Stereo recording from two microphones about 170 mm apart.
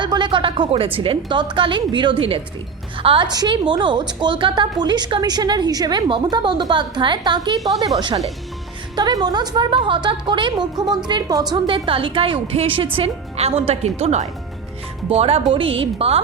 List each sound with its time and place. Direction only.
0.0 s a sound: 25° right (ahead or behind)
0.9 s a woman's voice: 30° right (ahead or behind)
9.0 s a woman's voice: 25° right (ahead or behind)